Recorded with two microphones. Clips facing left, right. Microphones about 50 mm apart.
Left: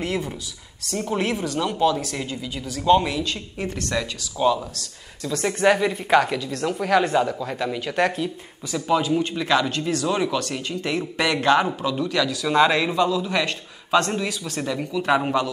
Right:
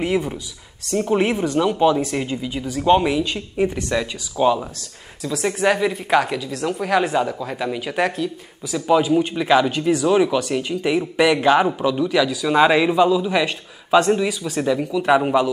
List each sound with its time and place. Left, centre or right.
0.0 s speech: centre
5.2 s a woman's voice: centre